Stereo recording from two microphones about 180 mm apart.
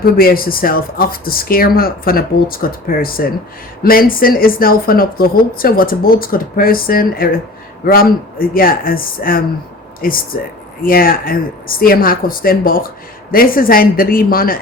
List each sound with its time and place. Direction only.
0.0 s speech: 55° left (ahead or behind)